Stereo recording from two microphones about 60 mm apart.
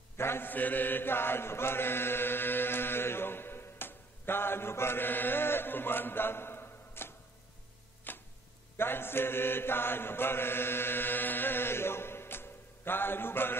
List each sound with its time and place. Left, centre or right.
0.2 s chant: left
8.1 s chopping: left
8.7 s chant: left